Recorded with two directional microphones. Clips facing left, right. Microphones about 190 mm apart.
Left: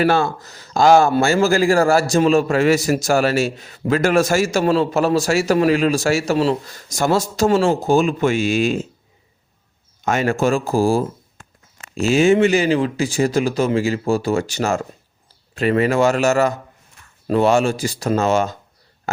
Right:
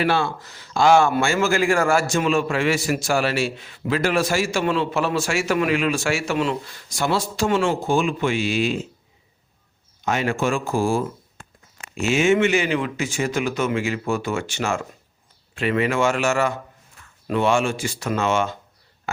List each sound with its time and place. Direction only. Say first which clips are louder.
0.0 s speech: left 4 dB; 45° left (ahead or behind)
10.0 s speech: left 4 dB; 45° left (ahead or behind)